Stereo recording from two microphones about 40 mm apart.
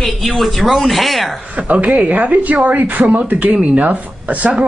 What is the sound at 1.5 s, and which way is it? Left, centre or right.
Speech, right.